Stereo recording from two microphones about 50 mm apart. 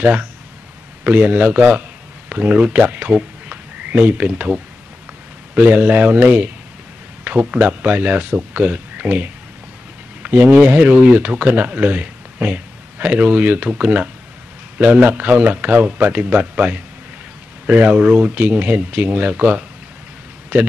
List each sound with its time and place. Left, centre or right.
0.0 s speech: right
14.8 s speech: right